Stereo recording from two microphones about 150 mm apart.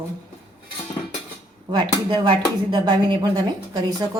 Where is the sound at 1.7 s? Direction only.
30° right (ahead or behind).